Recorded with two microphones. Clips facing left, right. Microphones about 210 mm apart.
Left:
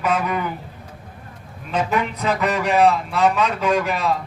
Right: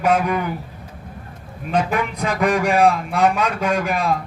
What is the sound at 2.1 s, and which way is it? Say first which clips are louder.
Speech: right 2 dB; 10° right (ahead or behind).